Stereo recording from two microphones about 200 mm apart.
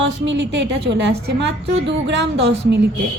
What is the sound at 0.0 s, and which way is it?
A woman's voice, 65° right (ahead or behind).